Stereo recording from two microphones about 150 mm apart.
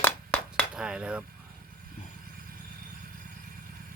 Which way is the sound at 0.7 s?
5° right (ahead or behind).